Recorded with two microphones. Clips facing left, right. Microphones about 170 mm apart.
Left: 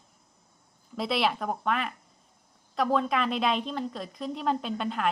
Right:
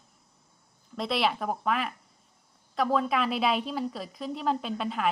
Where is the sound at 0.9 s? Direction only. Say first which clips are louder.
Even; centre (ahead or behind).